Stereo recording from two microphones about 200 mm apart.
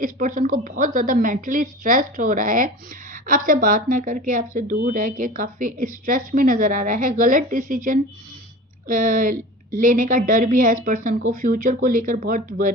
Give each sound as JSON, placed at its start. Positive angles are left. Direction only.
{"t": 0.0, "sound": "speech", "side_deg": -40}